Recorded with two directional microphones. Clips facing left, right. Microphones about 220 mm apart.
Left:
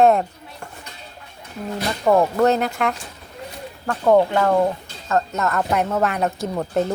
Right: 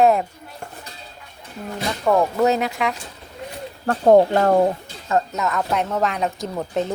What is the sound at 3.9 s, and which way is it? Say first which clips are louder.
Speech: right 3 dB; 40° right (ahead or behind).